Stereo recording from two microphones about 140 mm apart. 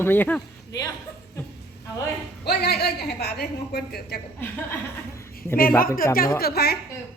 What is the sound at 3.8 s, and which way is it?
Speech, 90° left.